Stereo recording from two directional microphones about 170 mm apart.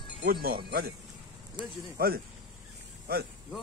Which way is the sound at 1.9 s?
65° right (ahead or behind).